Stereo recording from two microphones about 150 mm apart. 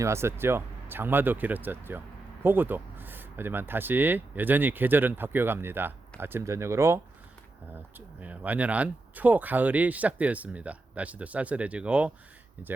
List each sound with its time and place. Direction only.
0.0 s speech: 20° right (ahead or behind)